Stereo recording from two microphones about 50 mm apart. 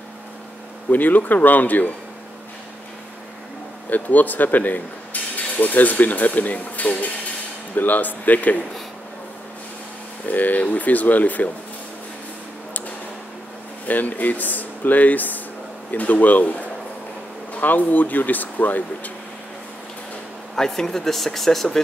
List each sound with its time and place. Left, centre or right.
0.8 s speech: left
3.9 s speech: left
10.2 s speech: left
13.8 s speech: left
20.5 s speech: centre